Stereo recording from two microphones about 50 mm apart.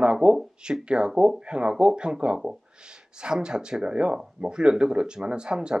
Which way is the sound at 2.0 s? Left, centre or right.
Right.